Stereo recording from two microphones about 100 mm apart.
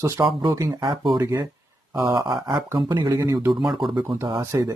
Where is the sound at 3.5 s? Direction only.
Centre (ahead or behind).